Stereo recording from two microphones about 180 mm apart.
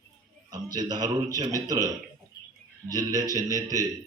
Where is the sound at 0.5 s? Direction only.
20° right (ahead or behind).